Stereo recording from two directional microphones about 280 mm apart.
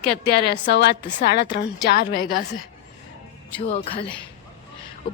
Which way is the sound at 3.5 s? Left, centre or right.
Left.